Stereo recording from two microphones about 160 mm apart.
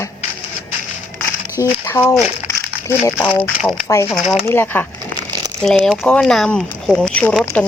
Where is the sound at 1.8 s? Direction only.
20° left (ahead or behind).